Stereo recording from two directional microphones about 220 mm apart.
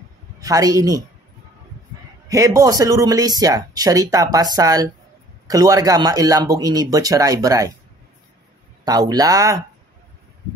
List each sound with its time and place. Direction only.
0.4 s speech: 15° right (ahead or behind)
2.2 s speech: 15° right (ahead or behind)
8.8 s speech: 15° right (ahead or behind)